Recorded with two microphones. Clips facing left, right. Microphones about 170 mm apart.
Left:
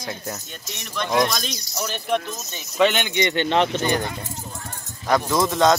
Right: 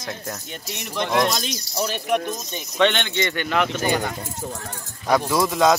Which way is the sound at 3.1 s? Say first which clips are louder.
Left 3 dB; 20° left (ahead or behind).